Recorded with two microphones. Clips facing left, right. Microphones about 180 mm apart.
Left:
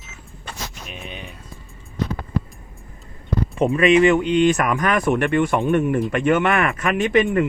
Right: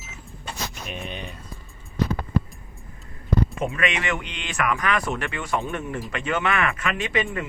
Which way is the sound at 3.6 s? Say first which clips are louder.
Left 12 dB; 35° left (ahead or behind).